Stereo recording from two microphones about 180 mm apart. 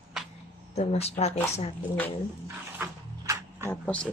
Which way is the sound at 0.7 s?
35° left (ahead or behind).